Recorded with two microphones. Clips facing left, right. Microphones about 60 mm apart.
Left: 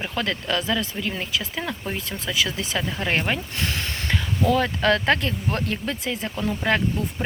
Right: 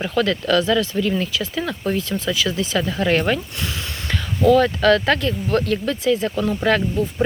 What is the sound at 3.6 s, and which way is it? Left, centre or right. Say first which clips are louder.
Speech: even; left.